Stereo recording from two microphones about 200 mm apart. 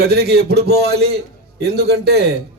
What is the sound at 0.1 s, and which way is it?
A man's voice, 55° right (ahead or behind).